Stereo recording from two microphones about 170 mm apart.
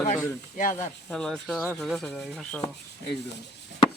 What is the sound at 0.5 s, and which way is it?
Speech, 50° left (ahead or behind).